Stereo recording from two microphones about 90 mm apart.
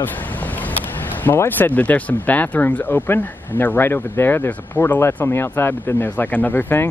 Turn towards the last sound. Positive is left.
turn(degrees=20)  # may be behind; listen again after turning